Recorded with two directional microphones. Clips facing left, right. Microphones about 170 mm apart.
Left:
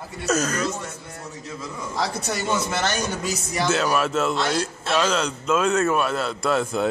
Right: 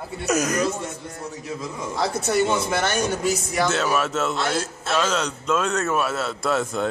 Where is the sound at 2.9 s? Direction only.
55° right (ahead or behind).